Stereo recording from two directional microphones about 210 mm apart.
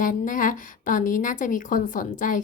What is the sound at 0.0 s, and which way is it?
A woman's voice, 40° left (ahead or behind).